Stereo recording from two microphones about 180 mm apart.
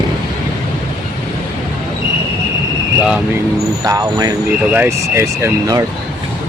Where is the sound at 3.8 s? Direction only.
20° right (ahead or behind).